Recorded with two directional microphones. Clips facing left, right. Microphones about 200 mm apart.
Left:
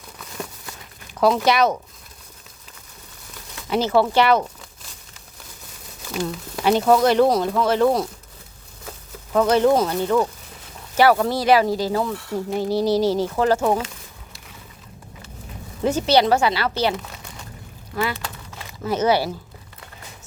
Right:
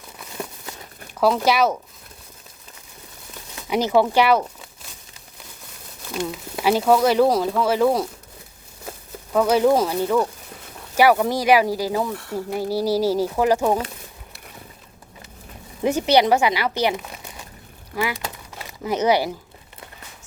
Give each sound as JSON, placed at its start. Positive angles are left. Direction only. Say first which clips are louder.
{"t": 1.5, "sound": "speech", "louder": "even", "side_deg": -5}
{"t": 3.5, "sound": "speech", "louder": "even", "side_deg": -15}
{"t": 6.1, "sound": "speech", "louder": "left 1 dB", "side_deg": -5}
{"t": 9.3, "sound": "speech", "louder": "even", "side_deg": -5}
{"t": 15.8, "sound": "speech", "louder": "even", "side_deg": -15}